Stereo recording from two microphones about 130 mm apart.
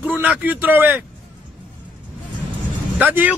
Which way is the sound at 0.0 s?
10° right (ahead or behind).